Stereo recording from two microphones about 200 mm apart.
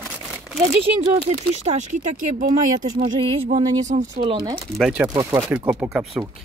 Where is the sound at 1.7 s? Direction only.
40° right (ahead or behind).